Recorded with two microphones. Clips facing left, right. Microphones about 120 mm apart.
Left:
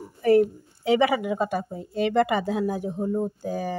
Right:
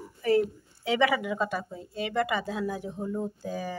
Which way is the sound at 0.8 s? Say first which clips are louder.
Left 4 dB; 45° left (ahead or behind).